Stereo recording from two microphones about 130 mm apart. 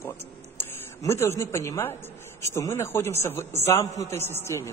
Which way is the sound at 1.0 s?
20° left (ahead or behind).